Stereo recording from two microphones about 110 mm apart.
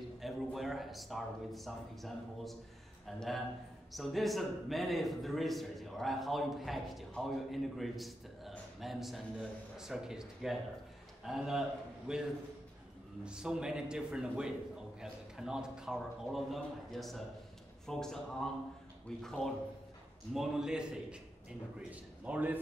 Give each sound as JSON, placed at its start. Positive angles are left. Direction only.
{"t": 0.2, "sound": "a man's voice", "side_deg": 0}